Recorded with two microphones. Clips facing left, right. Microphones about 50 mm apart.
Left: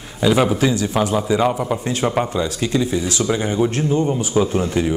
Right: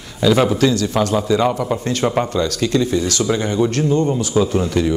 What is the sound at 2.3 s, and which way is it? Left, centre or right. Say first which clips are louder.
Speech: right 2 dB; centre.